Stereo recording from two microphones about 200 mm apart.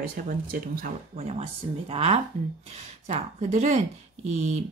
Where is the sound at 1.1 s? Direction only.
30° right (ahead or behind).